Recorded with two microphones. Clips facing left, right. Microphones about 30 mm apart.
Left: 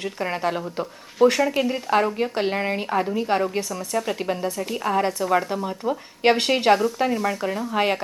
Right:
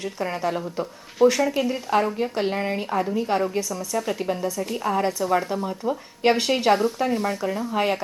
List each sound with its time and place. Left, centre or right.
0.0 s a woman's voice: left
3.9 s a woman's voice: centre
4.4 s a woman's voice: left
4.8 s a woman's voice: centre
7.1 s speech: left
7.3 s a woman's voice: left
7.6 s a woman's voice: centre